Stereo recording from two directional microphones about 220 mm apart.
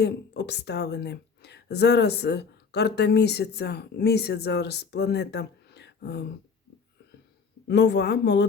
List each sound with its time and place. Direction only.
0.0 s speech: 50° left (ahead or behind)
7.7 s speech: 50° left (ahead or behind)